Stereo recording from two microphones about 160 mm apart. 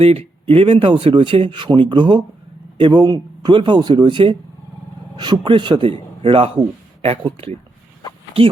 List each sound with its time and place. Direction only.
0.0 s speech: 35° right (ahead or behind)